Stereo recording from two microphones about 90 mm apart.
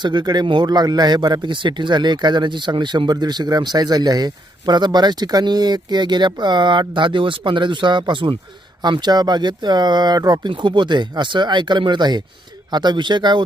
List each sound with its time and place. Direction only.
0.0 s speech: 55° right (ahead or behind)
10.5 s speech: 60° right (ahead or behind)